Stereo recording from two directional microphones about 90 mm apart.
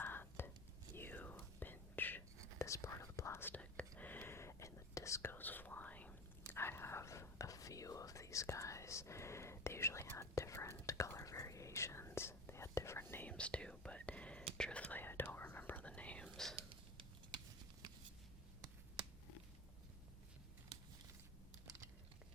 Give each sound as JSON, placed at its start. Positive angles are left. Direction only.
{"t": 0.0, "sound": "whispering", "side_deg": 25}
{"t": 2.6, "sound": "whispering", "side_deg": 35}
{"t": 13.3, "sound": "whispering", "side_deg": 10}
{"t": 16.3, "sound": "whispering", "side_deg": 5}